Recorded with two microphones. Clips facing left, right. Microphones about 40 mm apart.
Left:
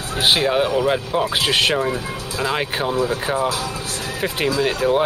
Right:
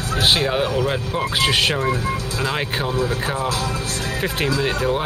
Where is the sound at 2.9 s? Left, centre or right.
Left.